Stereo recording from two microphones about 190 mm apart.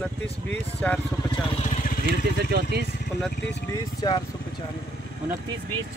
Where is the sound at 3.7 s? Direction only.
20° left (ahead or behind).